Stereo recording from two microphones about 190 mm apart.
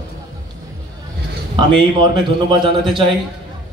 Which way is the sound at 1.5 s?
25° right (ahead or behind).